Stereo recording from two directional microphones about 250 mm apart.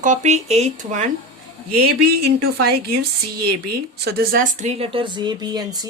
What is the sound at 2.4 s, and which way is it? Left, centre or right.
Speech, right.